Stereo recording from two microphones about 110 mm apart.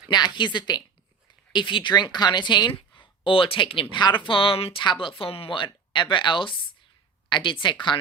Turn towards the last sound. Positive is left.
turn(degrees=45)  # may be behind; listen again after turning